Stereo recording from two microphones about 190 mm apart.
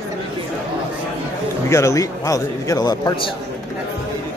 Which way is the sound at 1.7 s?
15° left (ahead or behind).